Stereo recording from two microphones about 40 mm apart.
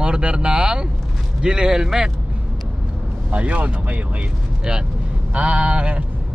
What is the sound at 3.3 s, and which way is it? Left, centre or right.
Speech, right.